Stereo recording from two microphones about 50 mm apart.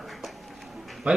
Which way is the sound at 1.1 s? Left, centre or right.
Right.